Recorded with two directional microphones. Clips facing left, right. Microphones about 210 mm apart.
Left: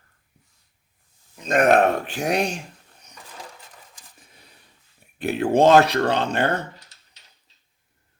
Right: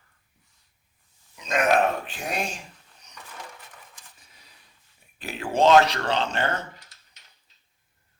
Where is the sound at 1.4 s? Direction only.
55° left (ahead or behind); by 2.4 s 75° left (ahead or behind).